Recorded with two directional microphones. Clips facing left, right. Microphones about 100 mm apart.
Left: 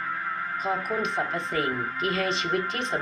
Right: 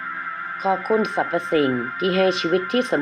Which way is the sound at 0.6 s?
90° right.